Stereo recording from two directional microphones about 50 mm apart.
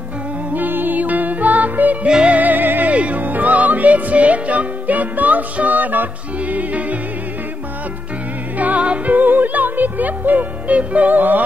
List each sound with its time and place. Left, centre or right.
0.6 s music: right
2.0 s music: centre
2.3 s music: right
2.9 s music: right
8.5 s music: right
9.1 s speech: right